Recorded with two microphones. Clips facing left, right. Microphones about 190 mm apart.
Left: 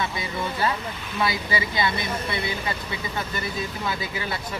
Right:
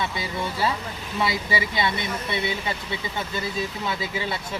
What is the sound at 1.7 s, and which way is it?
Speech, 25° right (ahead or behind).